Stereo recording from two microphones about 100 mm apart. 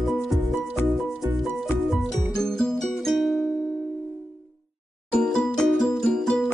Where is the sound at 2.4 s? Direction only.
5° left (ahead or behind).